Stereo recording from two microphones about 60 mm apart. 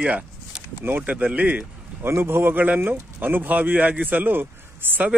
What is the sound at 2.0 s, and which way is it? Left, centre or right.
Speech, right.